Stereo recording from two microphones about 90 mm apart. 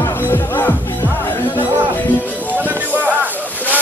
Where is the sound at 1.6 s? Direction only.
20° right (ahead or behind).